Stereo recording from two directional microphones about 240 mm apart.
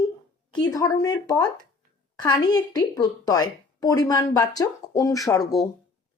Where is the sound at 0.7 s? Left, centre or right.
Centre.